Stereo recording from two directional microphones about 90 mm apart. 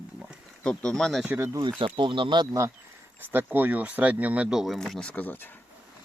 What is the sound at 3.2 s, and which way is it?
Speech, 25° right (ahead or behind).